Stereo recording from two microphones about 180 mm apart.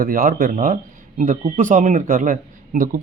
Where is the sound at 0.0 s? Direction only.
50° right (ahead or behind).